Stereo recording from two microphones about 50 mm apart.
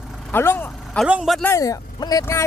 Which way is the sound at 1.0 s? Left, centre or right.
Left.